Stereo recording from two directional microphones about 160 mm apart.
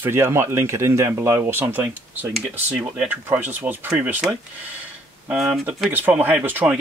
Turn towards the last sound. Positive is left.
turn(degrees=-10)  # may be behind; listen again after turning